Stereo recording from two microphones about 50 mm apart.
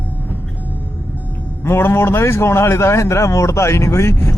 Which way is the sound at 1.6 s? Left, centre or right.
Left.